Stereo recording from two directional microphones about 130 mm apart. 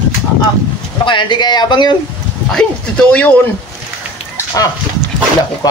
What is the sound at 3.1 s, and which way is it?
Speech, 15° left (ahead or behind).